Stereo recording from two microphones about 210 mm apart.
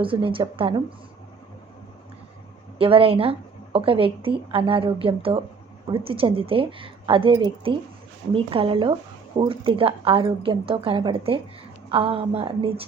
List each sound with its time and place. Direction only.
0.0 s a woman's voice: 25° right (ahead or behind)
2.7 s a woman's voice: 25° right (ahead or behind)